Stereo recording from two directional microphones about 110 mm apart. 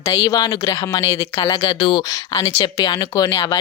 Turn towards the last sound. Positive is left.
turn(degrees=35)  # may be behind; listen again after turning